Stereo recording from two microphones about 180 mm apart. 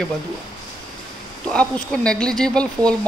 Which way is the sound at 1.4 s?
5° left (ahead or behind).